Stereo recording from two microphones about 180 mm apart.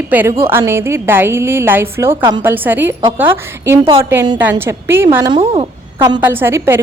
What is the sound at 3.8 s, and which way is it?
Speech, 30° right (ahead or behind).